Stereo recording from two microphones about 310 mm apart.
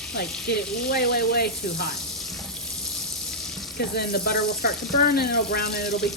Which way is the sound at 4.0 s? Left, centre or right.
Left.